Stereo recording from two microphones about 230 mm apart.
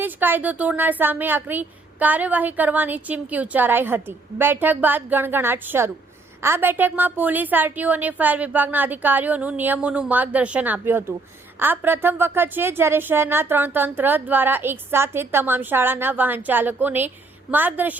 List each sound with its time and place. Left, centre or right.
0.0 s a woman's voice: centre